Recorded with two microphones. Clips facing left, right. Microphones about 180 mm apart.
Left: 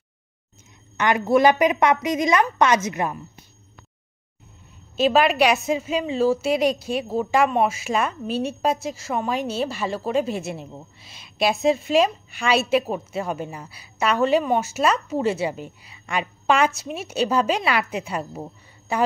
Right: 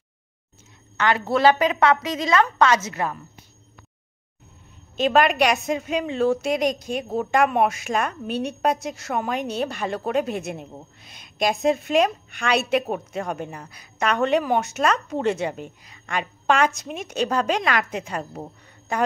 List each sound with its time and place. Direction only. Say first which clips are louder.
0.9 s a woman's voice: left 3 dB; 15° left (ahead or behind)
4.9 s a woman's voice: left 1 dB; 5° left (ahead or behind)